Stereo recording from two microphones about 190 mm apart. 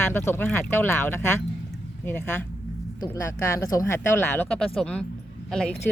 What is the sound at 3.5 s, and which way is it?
Speech, 15° left (ahead or behind).